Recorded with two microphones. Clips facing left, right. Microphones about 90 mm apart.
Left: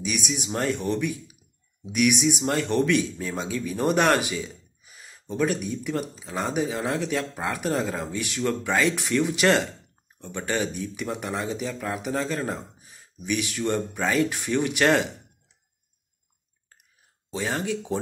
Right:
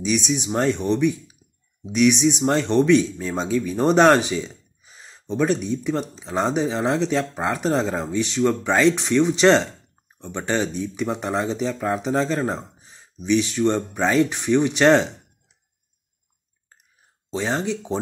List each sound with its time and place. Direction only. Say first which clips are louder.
0.0 s speech: right 7 dB; 25° right (ahead or behind)
17.3 s speech: right 4 dB; 25° right (ahead or behind)